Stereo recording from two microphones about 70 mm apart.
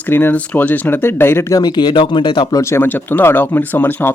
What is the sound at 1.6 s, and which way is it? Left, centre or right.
Speech, left.